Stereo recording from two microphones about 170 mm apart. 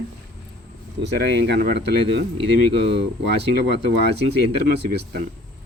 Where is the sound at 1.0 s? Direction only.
75° right (ahead or behind).